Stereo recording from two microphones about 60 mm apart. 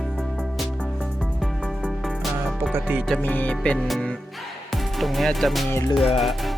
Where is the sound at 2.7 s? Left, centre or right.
Right.